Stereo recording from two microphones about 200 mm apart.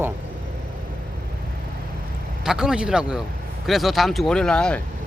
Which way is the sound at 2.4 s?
5° right (ahead or behind).